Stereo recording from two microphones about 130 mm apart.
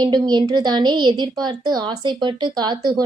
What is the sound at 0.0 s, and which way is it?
A woman's voice, 35° right (ahead or behind).